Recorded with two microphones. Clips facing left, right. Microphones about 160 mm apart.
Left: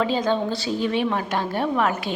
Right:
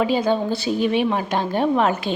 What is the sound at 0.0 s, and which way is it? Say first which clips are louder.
A woman's voice: right 2 dB; 10° right (ahead or behind).